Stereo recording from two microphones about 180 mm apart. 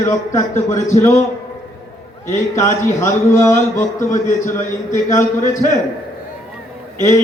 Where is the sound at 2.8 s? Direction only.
15° left (ahead or behind).